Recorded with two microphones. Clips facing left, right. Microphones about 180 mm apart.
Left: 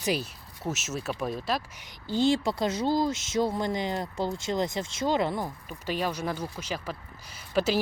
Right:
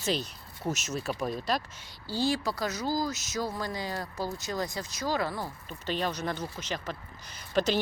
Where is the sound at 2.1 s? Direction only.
20° left (ahead or behind).